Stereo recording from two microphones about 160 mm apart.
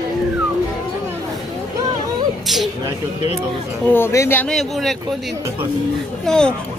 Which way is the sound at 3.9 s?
15° left (ahead or behind).